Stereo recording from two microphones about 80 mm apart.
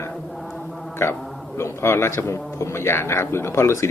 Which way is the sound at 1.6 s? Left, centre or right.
Left.